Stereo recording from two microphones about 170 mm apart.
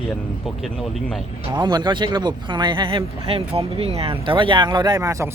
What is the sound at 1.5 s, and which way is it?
Speech, 25° right (ahead or behind).